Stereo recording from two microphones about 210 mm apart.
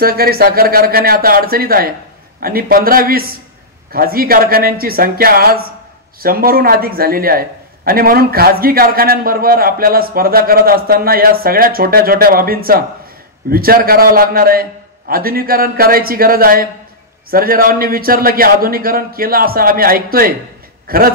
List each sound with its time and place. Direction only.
0.0 s a man's voice: 45° right (ahead or behind)